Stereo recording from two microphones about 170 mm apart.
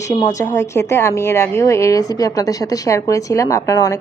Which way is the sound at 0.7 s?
15° left (ahead or behind).